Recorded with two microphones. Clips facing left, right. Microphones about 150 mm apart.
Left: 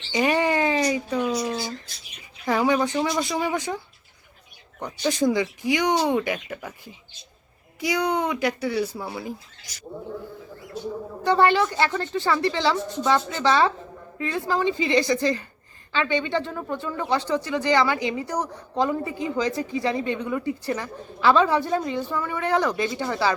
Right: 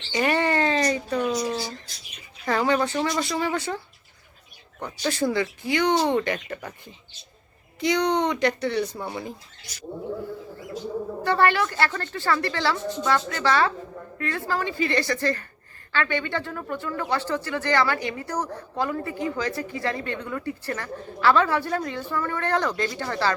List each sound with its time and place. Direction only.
0.1 s a sound: 15° left (ahead or behind)
2.5 s speech: 10° left (ahead or behind)
4.8 s speech: 15° left (ahead or behind)
11.2 s speech: 15° left (ahead or behind)